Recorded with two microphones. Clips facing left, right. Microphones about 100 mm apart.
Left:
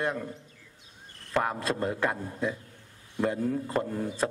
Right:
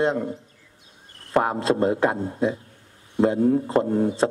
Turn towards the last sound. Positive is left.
turn(degrees=-25)  # may be behind; listen again after turning